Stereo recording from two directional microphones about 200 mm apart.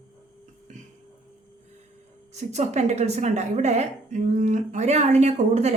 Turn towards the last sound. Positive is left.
turn(degrees=-35)  # may be behind; listen again after turning